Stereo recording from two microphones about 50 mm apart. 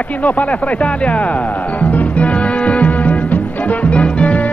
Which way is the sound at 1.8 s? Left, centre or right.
Left.